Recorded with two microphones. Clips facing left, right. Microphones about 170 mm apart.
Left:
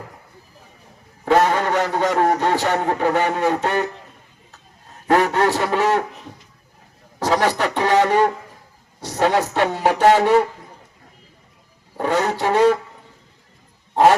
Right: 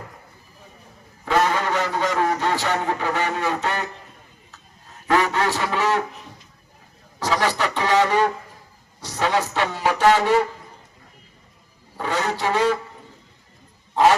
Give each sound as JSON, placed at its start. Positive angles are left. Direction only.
{"t": 1.2, "sound": "a man's voice", "side_deg": 55}
{"t": 5.0, "sound": "speech", "side_deg": 55}
{"t": 7.2, "sound": "a man's voice", "side_deg": 55}
{"t": 11.9, "sound": "speech", "side_deg": 50}
{"t": 13.9, "sound": "dog", "side_deg": 55}